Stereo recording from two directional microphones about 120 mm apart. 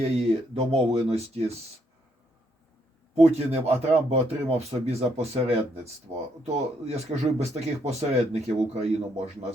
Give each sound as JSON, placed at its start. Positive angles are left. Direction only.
{"t": 0.2, "sound": "speech", "side_deg": -60}
{"t": 3.2, "sound": "speech", "side_deg": -60}